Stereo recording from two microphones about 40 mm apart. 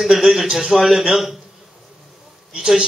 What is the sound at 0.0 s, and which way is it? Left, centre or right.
Speech, centre.